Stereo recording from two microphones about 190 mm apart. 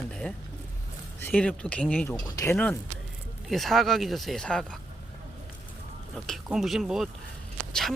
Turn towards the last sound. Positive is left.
turn(degrees=0)  # may be behind; listen again after turning